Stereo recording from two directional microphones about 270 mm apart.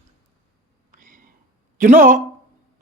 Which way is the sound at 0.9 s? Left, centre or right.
Right.